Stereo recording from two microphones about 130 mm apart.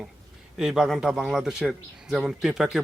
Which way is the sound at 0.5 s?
5° right (ahead or behind).